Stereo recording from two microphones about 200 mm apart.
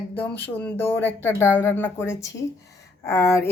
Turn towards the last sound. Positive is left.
turn(degrees=10)  # may be behind; listen again after turning